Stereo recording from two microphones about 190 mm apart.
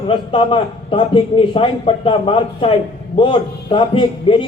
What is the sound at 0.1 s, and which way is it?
A man's voice, 25° left (ahead or behind).